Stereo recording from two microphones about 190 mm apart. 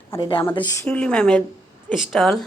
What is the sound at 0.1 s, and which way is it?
Speech, 25° left (ahead or behind).